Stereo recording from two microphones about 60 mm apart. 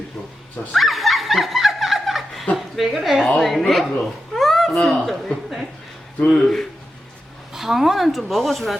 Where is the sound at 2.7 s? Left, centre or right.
Centre.